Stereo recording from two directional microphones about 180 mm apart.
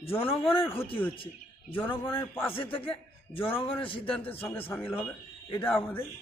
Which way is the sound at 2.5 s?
30° left (ahead or behind).